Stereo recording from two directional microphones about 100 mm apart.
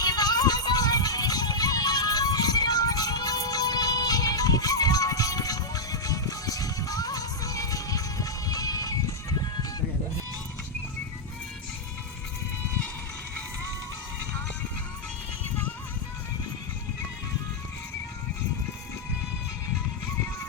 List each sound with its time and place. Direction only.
0.0 s music: 40° left (ahead or behind)